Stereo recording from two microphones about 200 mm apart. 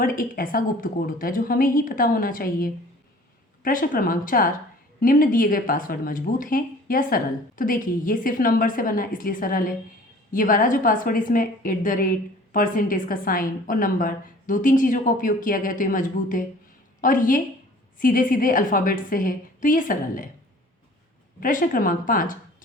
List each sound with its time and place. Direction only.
0.0 s speech: 45° left (ahead or behind)
21.4 s speech: 40° left (ahead or behind)